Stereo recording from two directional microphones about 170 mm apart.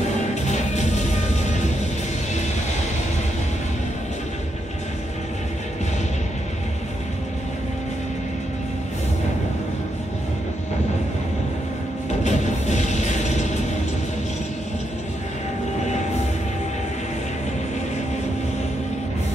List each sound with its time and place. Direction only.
0.3 s music: 45° left (ahead or behind)
12.2 s music: 45° left (ahead or behind)